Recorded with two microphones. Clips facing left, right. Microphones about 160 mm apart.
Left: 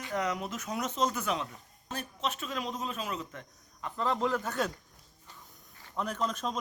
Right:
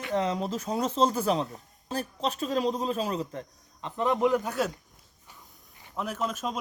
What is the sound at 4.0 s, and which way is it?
Speech, 15° right (ahead or behind).